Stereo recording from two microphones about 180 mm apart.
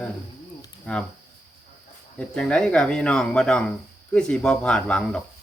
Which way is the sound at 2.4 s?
5° left (ahead or behind).